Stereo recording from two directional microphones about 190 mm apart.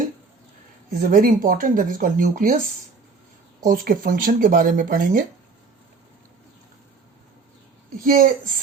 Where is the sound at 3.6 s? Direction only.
50° right (ahead or behind).